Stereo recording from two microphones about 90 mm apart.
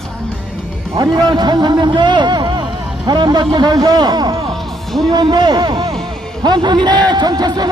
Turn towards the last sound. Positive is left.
turn(degrees=-50)  # may be behind; listen again after turning